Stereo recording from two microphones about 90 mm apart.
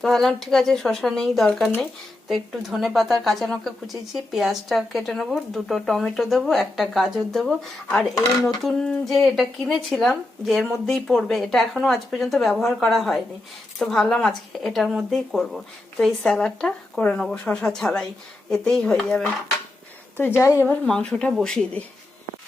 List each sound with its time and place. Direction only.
0.0 s speech: 5° left (ahead or behind)
20.1 s a woman's voice: 20° left (ahead or behind)
20.7 s speech: 10° left (ahead or behind)